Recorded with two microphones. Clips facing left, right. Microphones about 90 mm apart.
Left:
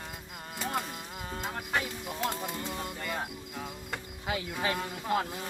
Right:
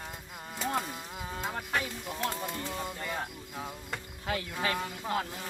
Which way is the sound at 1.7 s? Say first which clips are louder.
Left 1 dB; 10° left (ahead or behind).